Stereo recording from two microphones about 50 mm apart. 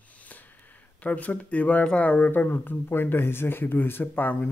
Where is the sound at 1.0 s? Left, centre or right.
Left.